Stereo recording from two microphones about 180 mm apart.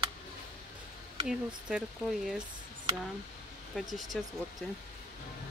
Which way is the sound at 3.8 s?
Centre (ahead or behind).